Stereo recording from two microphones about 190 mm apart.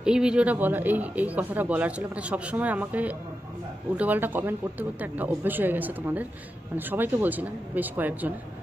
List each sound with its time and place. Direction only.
0.0 s speech: 5° right (ahead or behind)